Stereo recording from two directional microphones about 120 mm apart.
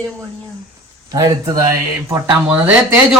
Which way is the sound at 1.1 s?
30° right (ahead or behind).